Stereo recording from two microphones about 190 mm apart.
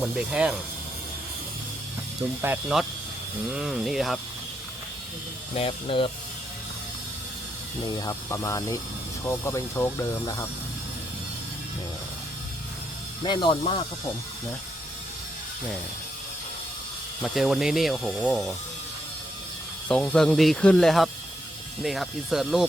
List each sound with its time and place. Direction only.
0.0 s speech: 5° right (ahead or behind)
2.4 s speech: 5° right (ahead or behind)
5.5 s speech: 30° left (ahead or behind)
7.9 s speech: 20° left (ahead or behind)
13.2 s speech: 25° left (ahead or behind)
17.2 s speech: centre (ahead or behind)
19.9 s speech: 5° left (ahead or behind)